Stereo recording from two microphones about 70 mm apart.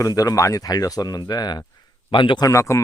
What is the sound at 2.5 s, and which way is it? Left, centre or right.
Speech, left.